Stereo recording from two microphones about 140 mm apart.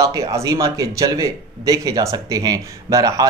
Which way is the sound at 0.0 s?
25° right (ahead or behind).